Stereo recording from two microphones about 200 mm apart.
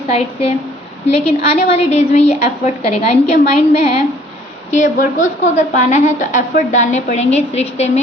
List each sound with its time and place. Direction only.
0.1 s a woman's voice: 30° left (ahead or behind)
1.5 s a woman's voice: 30° left (ahead or behind)